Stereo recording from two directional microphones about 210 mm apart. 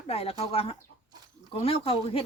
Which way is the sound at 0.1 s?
30° left (ahead or behind).